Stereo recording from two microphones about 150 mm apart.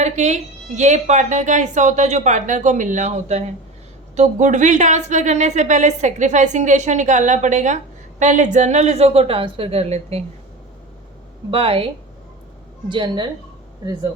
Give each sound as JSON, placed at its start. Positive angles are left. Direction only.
{"t": 0.0, "sound": "speech", "side_deg": -50}
{"t": 11.5, "sound": "speech", "side_deg": -40}
{"t": 12.9, "sound": "speech", "side_deg": -30}